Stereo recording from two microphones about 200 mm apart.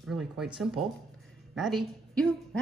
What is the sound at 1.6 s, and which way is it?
A woman's voice, centre (ahead or behind).